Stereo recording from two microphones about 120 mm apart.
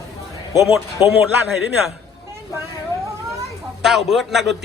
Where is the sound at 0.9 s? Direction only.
20° right (ahead or behind).